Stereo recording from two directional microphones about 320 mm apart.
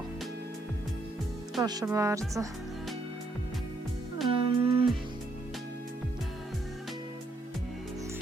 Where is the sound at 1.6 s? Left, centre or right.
Centre.